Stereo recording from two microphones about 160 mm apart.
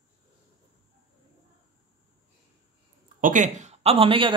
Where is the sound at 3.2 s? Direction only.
55° right (ahead or behind); by 4.3 s 35° right (ahead or behind).